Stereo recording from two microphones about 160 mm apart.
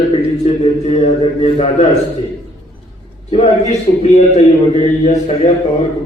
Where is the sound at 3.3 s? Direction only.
40° left (ahead or behind).